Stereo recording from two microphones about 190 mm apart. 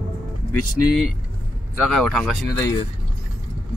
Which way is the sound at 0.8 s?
Centre (ahead or behind).